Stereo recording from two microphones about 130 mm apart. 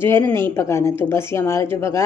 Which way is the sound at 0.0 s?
15° left (ahead or behind).